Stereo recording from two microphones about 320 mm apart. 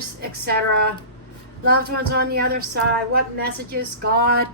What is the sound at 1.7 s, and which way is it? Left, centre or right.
A woman's voice, right.